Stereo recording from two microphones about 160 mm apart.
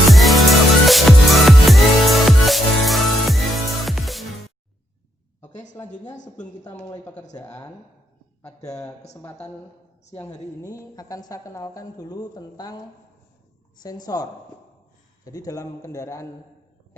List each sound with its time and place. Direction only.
0.1 s music: centre (ahead or behind)
5.8 s speech: 10° left (ahead or behind)
7.3 s a woman's voice: 25° left (ahead or behind)
10.6 s a woman's voice: 20° left (ahead or behind)
13.8 s a woman's voice: 25° left (ahead or behind)